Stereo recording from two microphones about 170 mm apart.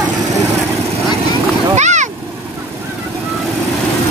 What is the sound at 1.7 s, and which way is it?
Vehicle, 45° right (ahead or behind).